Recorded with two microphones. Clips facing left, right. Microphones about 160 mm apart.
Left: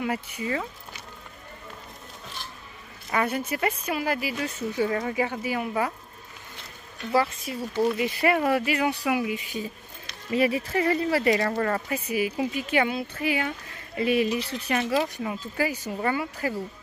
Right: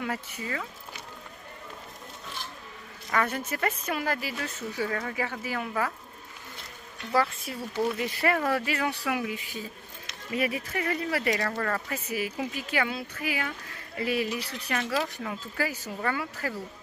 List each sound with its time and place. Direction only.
0.0 s speech: 15° left (ahead or behind)
3.1 s a woman's voice: 15° left (ahead or behind)
7.1 s a woman's voice: 10° left (ahead or behind)
10.3 s speech: 30° left (ahead or behind)